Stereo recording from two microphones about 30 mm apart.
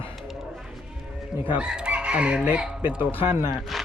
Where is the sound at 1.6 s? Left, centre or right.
Right.